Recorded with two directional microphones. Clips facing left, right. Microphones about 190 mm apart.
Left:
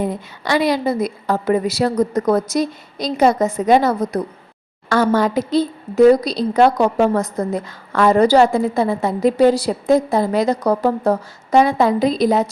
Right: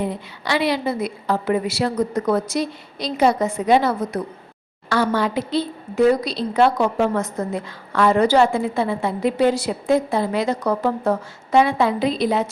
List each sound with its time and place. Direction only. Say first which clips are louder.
0.0 s a woman's voice: left 3 dB; 45° left (ahead or behind)